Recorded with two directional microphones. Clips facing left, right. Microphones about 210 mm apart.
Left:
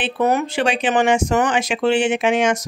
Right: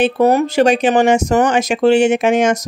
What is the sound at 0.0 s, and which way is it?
Speech, 35° right (ahead or behind).